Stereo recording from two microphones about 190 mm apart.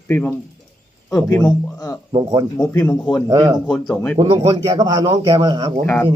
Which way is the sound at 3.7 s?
10° left (ahead or behind).